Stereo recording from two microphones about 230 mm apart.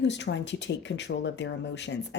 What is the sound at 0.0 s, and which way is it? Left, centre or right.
Speech, left.